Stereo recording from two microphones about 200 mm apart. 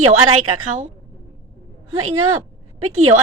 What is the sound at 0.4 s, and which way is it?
Speech, 90° right.